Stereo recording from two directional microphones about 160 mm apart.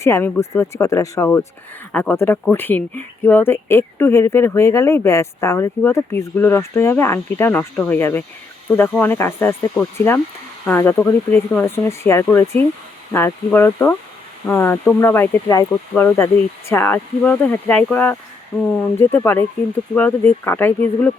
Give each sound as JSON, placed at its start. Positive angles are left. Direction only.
{"t": 0.0, "sound": "speech", "side_deg": 15}
{"t": 1.9, "sound": "speech", "side_deg": 10}